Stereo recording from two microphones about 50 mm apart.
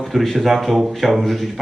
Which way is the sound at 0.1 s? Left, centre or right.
Centre.